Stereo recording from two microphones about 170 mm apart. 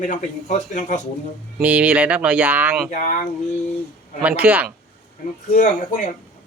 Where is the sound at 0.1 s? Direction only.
50° left (ahead or behind).